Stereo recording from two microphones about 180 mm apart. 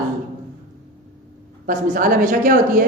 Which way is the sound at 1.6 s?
45° right (ahead or behind).